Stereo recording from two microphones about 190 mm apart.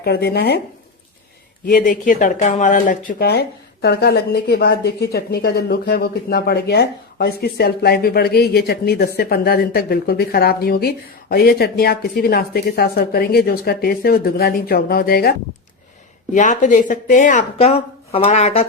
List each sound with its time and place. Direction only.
0.0 s speech: 60° left (ahead or behind)
1.6 s speech: 45° left (ahead or behind)
16.3 s speech: 40° left (ahead or behind)